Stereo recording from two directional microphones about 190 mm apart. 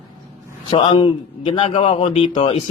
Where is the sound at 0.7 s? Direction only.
25° left (ahead or behind).